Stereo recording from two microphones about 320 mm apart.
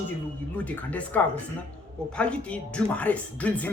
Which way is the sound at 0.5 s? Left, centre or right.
Centre.